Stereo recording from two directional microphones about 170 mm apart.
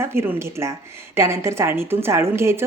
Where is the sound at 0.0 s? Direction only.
15° right (ahead or behind).